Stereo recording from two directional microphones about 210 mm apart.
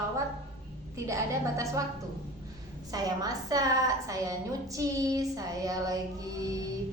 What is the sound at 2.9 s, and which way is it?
A woman's voice, 15° right (ahead or behind).